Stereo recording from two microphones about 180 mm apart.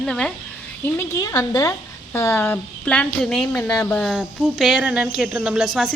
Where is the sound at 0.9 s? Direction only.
15° left (ahead or behind).